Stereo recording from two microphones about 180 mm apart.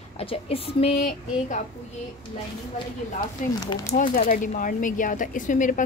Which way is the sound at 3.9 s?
50° left (ahead or behind).